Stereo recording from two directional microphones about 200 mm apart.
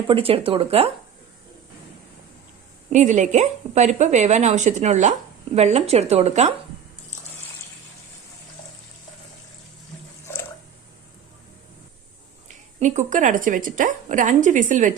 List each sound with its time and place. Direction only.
0.1 s speech: 30° right (ahead or behind)
2.9 s a woman's voice: 40° right (ahead or behind)
12.8 s a woman's voice: 35° right (ahead or behind)